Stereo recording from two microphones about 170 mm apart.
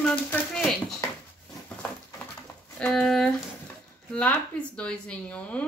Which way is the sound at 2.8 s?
5° left (ahead or behind).